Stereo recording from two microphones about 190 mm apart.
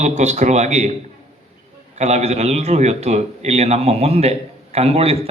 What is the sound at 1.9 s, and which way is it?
A man's voice, 35° right (ahead or behind).